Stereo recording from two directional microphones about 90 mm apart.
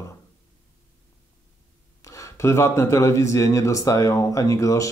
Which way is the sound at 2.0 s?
35° left (ahead or behind).